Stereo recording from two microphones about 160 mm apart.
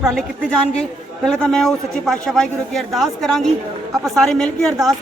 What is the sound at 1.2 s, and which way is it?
A woman's voice, 5° left (ahead or behind).